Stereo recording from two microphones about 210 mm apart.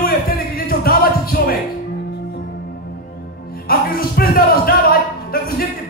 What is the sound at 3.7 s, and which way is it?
Music, 45° left (ahead or behind).